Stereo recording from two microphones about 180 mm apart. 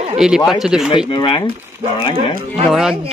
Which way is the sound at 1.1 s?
30° left (ahead or behind).